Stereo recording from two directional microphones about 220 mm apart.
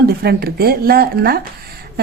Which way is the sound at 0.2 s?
45° right (ahead or behind).